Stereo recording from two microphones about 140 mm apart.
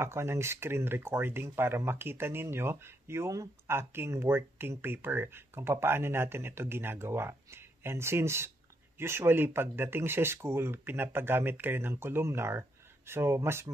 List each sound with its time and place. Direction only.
0.0 s speech: 20° right (ahead or behind)